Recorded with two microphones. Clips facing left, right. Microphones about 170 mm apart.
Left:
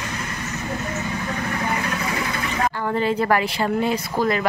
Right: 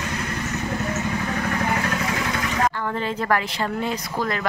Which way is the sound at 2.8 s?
20° left (ahead or behind).